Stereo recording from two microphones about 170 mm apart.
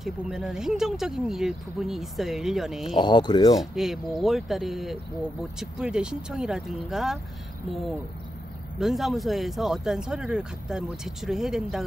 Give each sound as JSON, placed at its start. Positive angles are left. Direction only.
{"t": 0.0, "sound": "speech", "side_deg": 0}
{"t": 3.0, "sound": "speech", "side_deg": 25}
{"t": 3.5, "sound": "speech", "side_deg": 0}
{"t": 8.7, "sound": "speech", "side_deg": 0}